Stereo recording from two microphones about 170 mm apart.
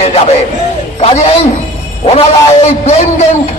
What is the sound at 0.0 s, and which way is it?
Music, 40° left (ahead or behind).